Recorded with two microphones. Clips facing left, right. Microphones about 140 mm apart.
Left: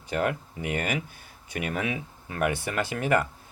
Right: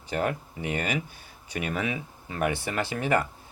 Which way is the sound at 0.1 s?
55° left (ahead or behind).